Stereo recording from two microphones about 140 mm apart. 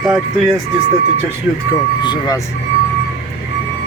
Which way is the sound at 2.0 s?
35° left (ahead or behind).